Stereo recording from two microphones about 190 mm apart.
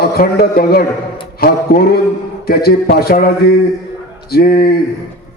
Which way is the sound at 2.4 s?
55° left (ahead or behind).